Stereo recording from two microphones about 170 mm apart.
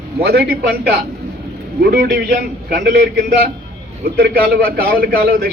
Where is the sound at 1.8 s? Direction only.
70° right (ahead or behind).